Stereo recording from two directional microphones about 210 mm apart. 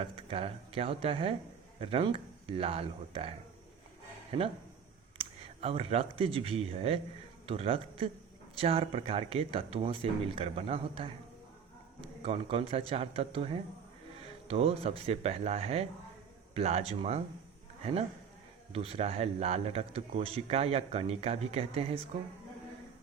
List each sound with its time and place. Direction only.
0.0 s speech: 25° right (ahead or behind)
18.7 s speech: 30° right (ahead or behind)